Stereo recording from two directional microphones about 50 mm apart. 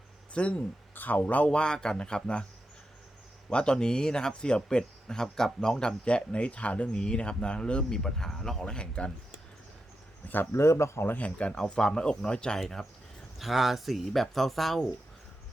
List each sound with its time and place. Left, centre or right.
0.3 s speech: left
0.9 s speech: left
1.5 s speech: centre
3.5 s speech: centre
6.1 s speech: left; by 8.6 s centre
8.6 s speech: centre
10.5 s speech: left
11.2 s speech: left
11.5 s speech: centre
13.4 s speech: centre